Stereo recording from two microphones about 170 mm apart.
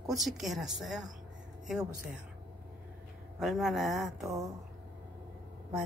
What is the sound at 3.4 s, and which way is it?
A woman's voice, centre (ahead or behind).